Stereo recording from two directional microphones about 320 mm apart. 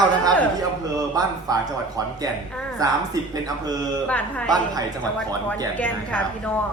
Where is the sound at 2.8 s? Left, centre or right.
Centre.